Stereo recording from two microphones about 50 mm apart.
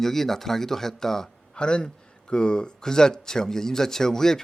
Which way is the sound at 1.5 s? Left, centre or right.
Centre.